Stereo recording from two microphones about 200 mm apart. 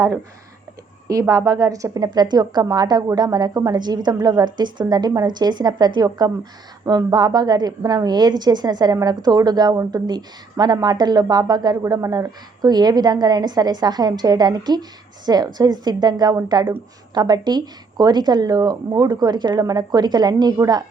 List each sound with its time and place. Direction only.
1.0 s a woman's voice: 15° right (ahead or behind)